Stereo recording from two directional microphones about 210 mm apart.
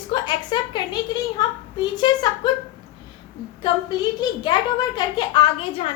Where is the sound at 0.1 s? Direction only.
20° left (ahead or behind).